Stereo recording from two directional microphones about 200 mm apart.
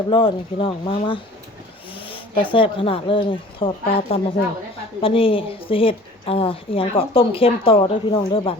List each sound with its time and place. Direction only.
0.1 s a woman's voice: 25° left (ahead or behind)
2.0 s a sound: 25° left (ahead or behind)
2.5 s a woman's voice: 25° left (ahead or behind)